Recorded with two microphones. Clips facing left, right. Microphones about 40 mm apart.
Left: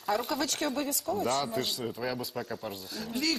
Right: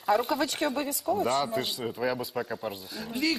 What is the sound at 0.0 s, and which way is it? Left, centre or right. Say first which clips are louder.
Speech: right 5 dB; centre.